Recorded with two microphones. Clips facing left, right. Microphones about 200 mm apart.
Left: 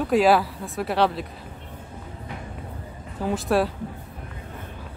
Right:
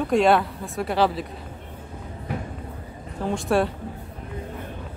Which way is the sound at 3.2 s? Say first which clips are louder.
Even; 5° left (ahead or behind).